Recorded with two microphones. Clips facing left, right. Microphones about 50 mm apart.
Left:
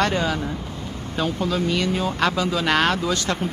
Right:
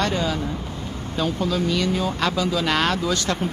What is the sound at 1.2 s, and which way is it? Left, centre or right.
Speech, left.